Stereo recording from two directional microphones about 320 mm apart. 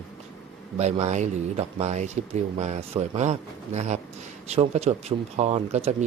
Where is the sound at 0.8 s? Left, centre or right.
Right.